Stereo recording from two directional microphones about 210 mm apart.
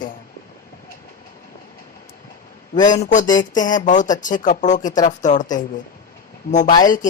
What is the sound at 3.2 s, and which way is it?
Speech, 20° left (ahead or behind).